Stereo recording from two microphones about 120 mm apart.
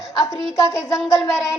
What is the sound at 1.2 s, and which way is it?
Speech, 5° right (ahead or behind).